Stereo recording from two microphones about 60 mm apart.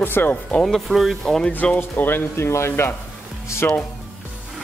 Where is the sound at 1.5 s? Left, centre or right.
Left.